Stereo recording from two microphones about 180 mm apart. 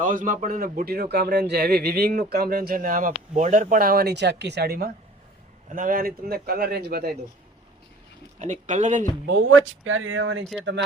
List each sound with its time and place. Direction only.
0.0 s speech: 45° right (ahead or behind)
5.7 s speech: 50° right (ahead or behind)
8.4 s speech: 40° right (ahead or behind)
9.2 s speech: 85° right